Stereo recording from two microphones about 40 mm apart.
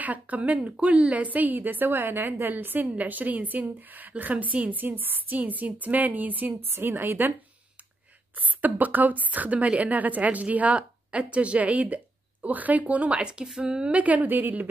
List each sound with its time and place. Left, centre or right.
0.0 s a woman's voice: right
1.2 s a woman's voice: right
6.7 s a woman's voice: right
8.4 s a woman's voice: right
13.2 s speech: right
13.9 s a woman's voice: right